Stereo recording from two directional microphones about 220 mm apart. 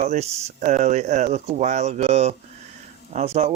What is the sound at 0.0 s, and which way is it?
Speech, 30° right (ahead or behind).